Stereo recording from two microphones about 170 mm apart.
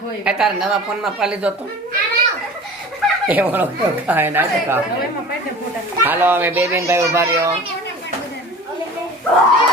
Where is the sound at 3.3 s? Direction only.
10° right (ahead or behind).